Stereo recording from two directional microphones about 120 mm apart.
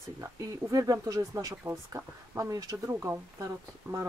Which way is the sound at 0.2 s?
30° right (ahead or behind).